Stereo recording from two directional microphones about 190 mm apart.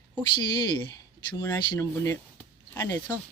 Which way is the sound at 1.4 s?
15° left (ahead or behind).